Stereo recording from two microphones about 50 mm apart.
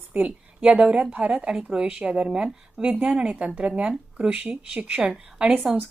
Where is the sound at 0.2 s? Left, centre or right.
Right.